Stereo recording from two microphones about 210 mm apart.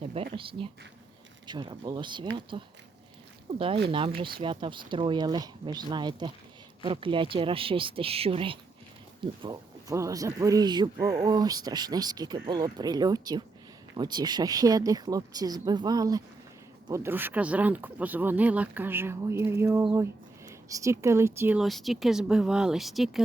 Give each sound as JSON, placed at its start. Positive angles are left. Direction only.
{"t": 0.3, "sound": "speech", "side_deg": -25}
{"t": 3.5, "sound": "speech", "side_deg": -20}